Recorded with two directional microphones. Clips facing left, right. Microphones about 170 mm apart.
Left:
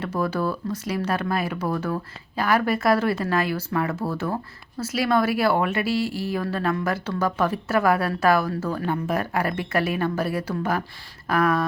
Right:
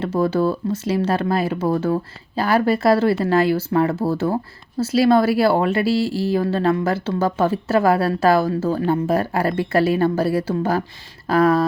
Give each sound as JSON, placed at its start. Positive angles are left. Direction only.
{"t": 0.0, "sound": "speech", "side_deg": -25}